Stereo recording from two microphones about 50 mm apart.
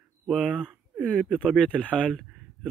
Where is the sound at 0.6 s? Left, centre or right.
Centre.